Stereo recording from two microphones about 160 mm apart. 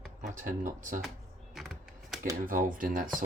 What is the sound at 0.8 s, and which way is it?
Speech, 55° right (ahead or behind).